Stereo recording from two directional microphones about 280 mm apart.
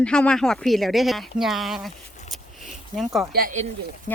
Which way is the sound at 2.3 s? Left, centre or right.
Centre.